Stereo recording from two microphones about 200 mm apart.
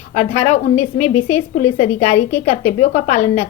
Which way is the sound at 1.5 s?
35° left (ahead or behind).